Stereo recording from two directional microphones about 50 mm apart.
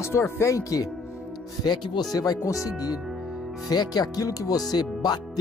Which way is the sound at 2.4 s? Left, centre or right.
Left.